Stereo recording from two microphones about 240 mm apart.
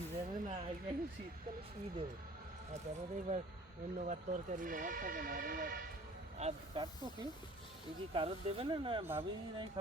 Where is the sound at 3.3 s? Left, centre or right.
Right.